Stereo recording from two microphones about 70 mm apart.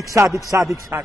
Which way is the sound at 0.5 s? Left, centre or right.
Right.